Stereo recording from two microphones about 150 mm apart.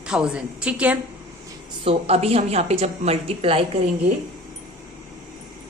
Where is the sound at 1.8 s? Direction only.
40° right (ahead or behind).